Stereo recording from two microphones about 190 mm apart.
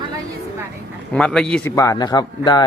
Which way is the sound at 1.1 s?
5° left (ahead or behind).